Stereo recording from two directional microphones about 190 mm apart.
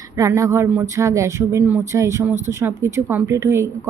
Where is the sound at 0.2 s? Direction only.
15° right (ahead or behind).